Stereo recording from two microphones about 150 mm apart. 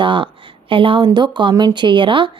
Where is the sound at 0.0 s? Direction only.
35° right (ahead or behind).